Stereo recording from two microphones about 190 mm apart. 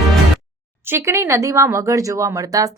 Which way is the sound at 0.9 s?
10° right (ahead or behind).